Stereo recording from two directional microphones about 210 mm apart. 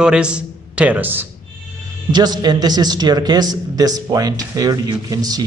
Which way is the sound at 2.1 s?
20° right (ahead or behind).